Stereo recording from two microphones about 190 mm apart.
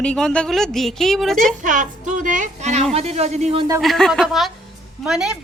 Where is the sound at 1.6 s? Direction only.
40° right (ahead or behind).